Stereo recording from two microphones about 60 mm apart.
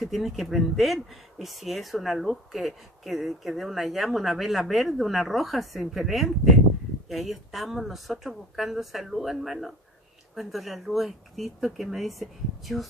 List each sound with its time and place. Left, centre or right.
0.0 s speech: centre